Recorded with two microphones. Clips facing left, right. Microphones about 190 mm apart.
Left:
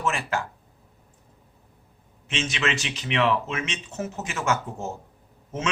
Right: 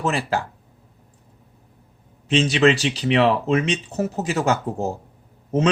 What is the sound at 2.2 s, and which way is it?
A man's voice, 35° right (ahead or behind).